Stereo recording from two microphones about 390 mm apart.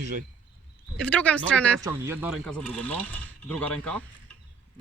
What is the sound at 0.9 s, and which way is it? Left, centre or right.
Speech, centre.